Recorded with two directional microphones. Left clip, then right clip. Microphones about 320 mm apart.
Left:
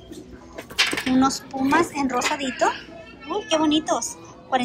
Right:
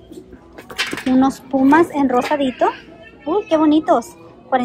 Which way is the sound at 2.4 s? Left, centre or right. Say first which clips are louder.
Right 4 dB; centre.